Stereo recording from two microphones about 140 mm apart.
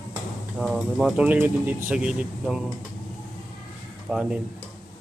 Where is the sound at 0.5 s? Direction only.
Centre (ahead or behind).